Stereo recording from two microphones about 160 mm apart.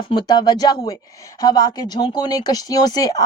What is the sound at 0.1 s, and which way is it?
Speech, 25° left (ahead or behind).